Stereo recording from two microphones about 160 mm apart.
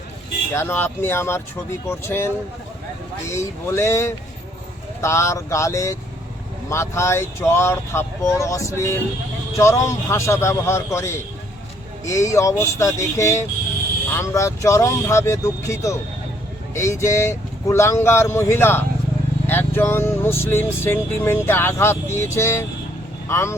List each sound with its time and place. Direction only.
0.5 s speech: 15° left (ahead or behind)